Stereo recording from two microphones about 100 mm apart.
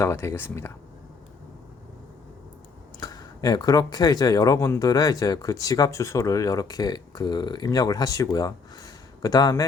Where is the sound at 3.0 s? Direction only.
40° left (ahead or behind).